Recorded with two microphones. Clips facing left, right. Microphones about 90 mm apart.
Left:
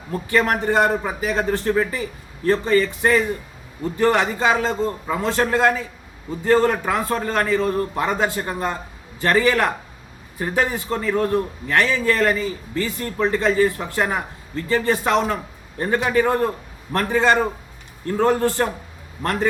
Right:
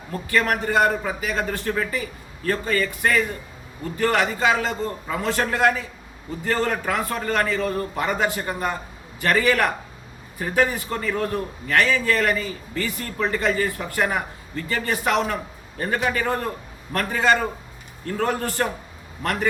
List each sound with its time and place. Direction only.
0.1 s a man's voice: 20° left (ahead or behind)